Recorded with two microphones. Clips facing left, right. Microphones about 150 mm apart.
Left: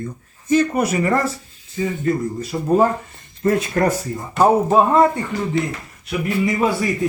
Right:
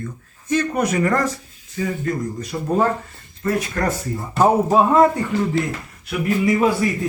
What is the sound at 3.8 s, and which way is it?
Speech, 30° left (ahead or behind).